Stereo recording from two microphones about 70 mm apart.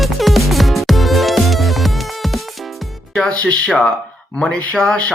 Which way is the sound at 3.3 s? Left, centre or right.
Centre.